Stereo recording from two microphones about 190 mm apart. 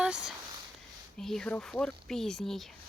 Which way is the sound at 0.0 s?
5° right (ahead or behind).